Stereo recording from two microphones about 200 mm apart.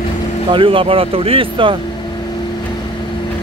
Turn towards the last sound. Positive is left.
turn(degrees=-25)  # may be behind; listen again after turning